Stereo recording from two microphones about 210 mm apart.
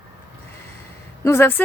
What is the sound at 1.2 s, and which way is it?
Speech, 10° left (ahead or behind).